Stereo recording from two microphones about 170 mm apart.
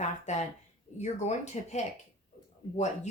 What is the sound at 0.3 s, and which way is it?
Speech, 40° left (ahead or behind).